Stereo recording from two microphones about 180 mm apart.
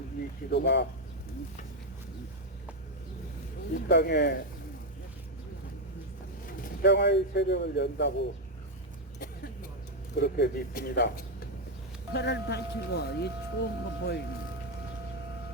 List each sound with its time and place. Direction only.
0.5 s speech: 70° left (ahead or behind)
3.8 s speech: 65° left (ahead or behind)
6.8 s speech: 70° left (ahead or behind)
9.1 s a sound: 60° left (ahead or behind)
10.2 s speech: 70° left (ahead or behind)
12.1 s speech: 70° left (ahead or behind)